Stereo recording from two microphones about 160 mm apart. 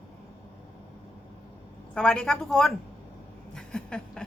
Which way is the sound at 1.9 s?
5° left (ahead or behind).